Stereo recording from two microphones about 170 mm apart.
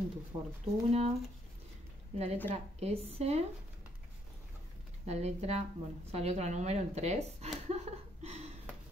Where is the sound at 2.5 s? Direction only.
40° right (ahead or behind).